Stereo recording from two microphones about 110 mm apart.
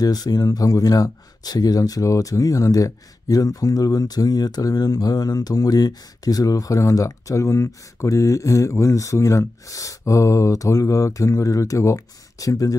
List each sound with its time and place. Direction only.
0.0 s speech: 35° left (ahead or behind)